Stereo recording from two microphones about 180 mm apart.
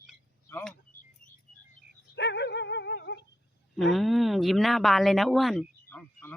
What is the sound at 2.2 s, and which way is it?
Dog, 70° left (ahead or behind).